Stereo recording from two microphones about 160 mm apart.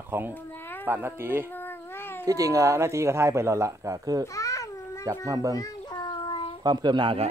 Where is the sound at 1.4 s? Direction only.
15° left (ahead or behind).